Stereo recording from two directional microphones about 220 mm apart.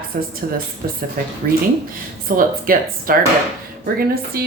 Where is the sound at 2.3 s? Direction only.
40° right (ahead or behind).